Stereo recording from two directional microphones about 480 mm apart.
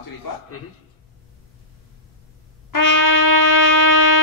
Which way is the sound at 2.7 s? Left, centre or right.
Left.